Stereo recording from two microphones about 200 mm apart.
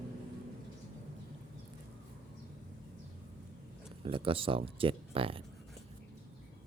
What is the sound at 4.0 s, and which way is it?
Speech, 25° right (ahead or behind).